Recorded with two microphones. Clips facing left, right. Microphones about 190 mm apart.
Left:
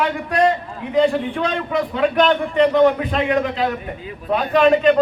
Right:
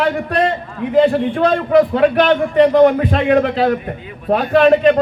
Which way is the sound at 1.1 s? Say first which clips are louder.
Right 6 dB; 45° right (ahead or behind).